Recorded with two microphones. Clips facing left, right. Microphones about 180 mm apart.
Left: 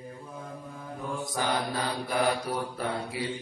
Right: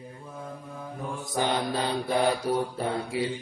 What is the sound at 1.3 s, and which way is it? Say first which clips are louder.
Mantra: right 4 dB; 25° right (ahead or behind).